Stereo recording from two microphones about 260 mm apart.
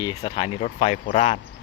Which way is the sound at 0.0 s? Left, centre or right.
Centre.